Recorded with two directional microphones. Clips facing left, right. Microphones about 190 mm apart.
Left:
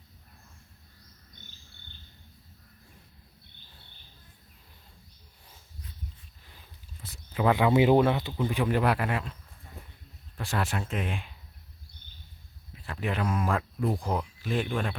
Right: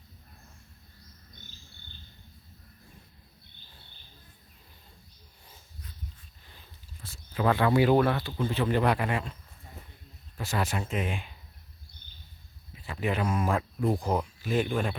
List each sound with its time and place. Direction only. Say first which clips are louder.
7.1 s speech: left 1 dB; 15° left (ahead or behind)
10.4 s speech: even; centre (ahead or behind)
12.8 s speech: right 1 dB; centre (ahead or behind)